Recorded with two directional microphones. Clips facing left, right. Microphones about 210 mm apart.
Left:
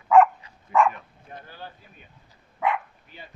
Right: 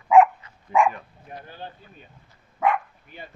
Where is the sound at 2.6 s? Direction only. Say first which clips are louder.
Right 3 dB; 50° right (ahead or behind).